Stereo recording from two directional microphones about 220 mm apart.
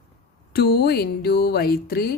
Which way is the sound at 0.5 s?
45° left (ahead or behind).